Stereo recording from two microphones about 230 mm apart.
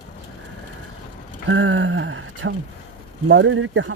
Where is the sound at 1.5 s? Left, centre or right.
Right.